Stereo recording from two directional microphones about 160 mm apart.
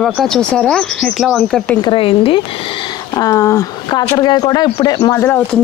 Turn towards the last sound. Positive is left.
turn(degrees=15)  # may be behind; listen again after turning